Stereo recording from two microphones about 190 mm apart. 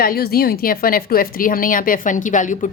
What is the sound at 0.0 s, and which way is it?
Speech, 50° left (ahead or behind).